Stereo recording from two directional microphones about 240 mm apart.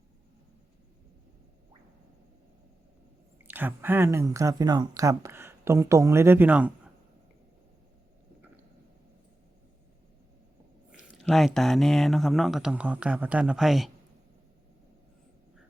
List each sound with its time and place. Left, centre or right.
3.5 s speech: centre
11.2 s speech: centre